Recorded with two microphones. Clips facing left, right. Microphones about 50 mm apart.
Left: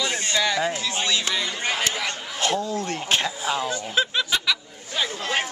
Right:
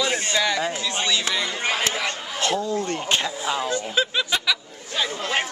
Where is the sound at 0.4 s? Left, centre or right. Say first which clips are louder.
Left 3 dB; centre.